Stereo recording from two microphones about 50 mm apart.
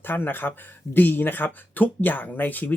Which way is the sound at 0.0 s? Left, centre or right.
Left.